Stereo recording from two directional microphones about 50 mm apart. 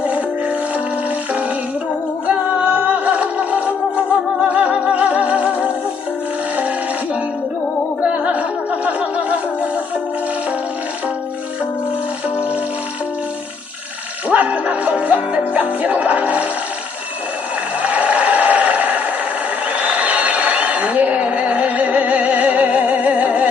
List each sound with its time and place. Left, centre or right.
0.0 s music: right
2.2 s music: right
4.4 s music: right
14.3 s music: right
17.8 s a sound: right